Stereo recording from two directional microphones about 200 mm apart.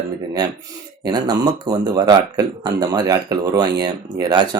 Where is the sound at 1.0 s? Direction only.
20° right (ahead or behind).